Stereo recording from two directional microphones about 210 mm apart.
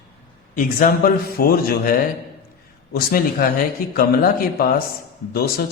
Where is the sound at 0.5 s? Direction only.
40° left (ahead or behind).